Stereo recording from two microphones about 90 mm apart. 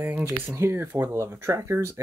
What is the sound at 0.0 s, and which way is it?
Speech, 20° right (ahead or behind).